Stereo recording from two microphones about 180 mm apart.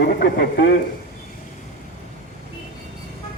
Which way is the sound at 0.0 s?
60° left (ahead or behind).